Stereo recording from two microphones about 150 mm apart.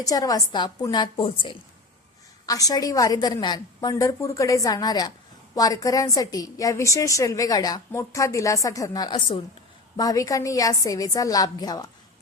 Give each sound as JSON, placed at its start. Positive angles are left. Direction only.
{"t": 0.0, "sound": "a woman's voice", "side_deg": 25}
{"t": 2.5, "sound": "a woman's voice", "side_deg": 25}